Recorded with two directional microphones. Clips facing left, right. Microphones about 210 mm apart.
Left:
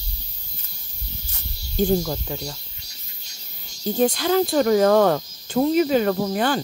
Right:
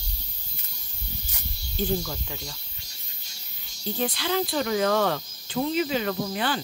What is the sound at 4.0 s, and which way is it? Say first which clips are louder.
Speech: left 8 dB; 45° left (ahead or behind).